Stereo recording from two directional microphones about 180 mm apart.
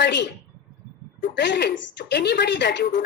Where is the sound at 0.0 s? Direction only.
75° left (ahead or behind).